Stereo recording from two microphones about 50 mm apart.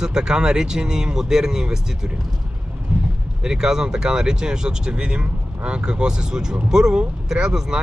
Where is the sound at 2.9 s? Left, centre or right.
Centre.